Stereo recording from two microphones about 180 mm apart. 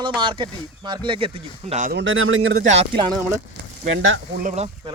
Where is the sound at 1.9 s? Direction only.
90° right.